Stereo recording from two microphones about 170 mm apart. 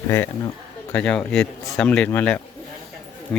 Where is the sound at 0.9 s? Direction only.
5° left (ahead or behind).